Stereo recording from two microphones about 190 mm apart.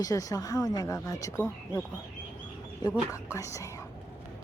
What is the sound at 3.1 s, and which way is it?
Speech, 15° left (ahead or behind).